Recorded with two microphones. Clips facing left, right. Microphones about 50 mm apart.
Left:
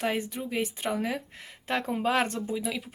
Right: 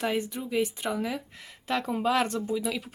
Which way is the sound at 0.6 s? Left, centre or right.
Left.